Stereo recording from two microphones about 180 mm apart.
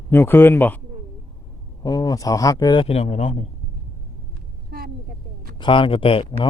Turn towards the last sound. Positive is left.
turn(degrees=30)  # may be behind; listen again after turning